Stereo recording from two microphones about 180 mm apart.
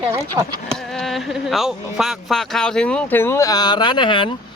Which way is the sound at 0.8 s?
Centre (ahead or behind).